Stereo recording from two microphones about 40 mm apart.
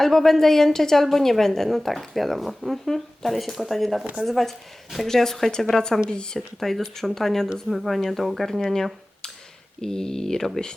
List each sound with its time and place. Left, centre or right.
0.0 s a woman's voice: centre
4.0 s speech: right
4.3 s a woman's voice: centre
6.1 s speech: left
6.6 s a woman's voice: centre
8.7 s a sound: centre
9.8 s a woman's voice: centre